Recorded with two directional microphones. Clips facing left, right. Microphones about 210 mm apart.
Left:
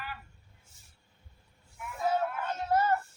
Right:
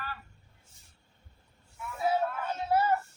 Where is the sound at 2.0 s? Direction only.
10° right (ahead or behind).